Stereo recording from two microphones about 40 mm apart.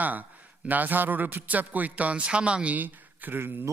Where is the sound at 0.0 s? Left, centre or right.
Right.